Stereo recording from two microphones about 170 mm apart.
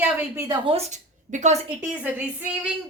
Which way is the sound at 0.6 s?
35° right (ahead or behind).